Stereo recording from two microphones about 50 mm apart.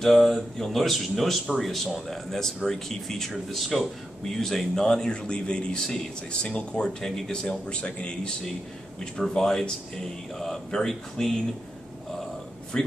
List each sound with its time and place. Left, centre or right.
0.0 s speech: centre; by 8.3 s left
9.3 s speech: centre
12.7 s speech: centre